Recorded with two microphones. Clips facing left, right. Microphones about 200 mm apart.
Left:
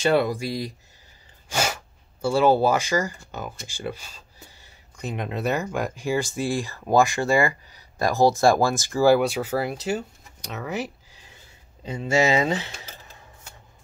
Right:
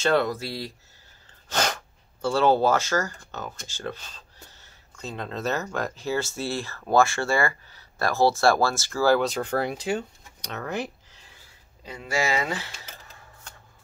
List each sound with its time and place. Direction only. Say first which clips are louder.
0.0 s speech: left 2 dB; 10° left (ahead or behind)
1.5 s sneeze: left 1 dB; 10° left (ahead or behind)
2.2 s speech: left 2 dB; 10° left (ahead or behind)
11.8 s speech: left 6 dB; 25° left (ahead or behind)